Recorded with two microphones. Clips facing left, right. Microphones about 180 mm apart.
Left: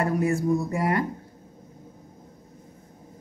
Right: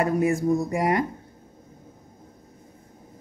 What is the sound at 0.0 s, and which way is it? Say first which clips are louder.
Speech: right 2 dB; 15° right (ahead or behind).